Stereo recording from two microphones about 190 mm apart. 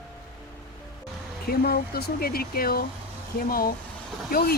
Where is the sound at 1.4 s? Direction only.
55° left (ahead or behind).